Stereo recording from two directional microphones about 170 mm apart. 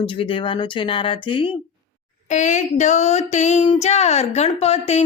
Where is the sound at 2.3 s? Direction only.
45° left (ahead or behind).